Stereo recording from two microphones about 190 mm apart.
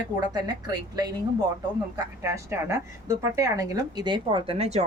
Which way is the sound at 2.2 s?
15° right (ahead or behind).